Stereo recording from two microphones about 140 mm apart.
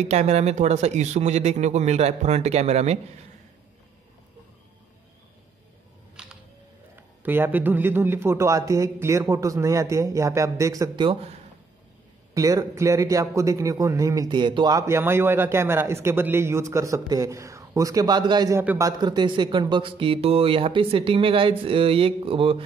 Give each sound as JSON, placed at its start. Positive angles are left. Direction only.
{"t": 0.0, "sound": "speech", "side_deg": -55}
{"t": 6.2, "sound": "camera", "side_deg": -5}
{"t": 7.0, "sound": "a man's voice", "side_deg": -15}
{"t": 12.4, "sound": "a man's voice", "side_deg": -25}
{"t": 18.6, "sound": "a man's voice", "side_deg": -15}
{"t": 18.9, "sound": "speech", "side_deg": -30}